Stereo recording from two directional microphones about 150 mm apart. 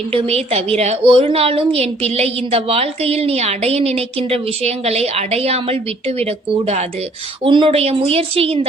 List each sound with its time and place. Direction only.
0.1 s a woman's voice: 40° right (ahead or behind)
7.4 s a woman's voice: 35° right (ahead or behind)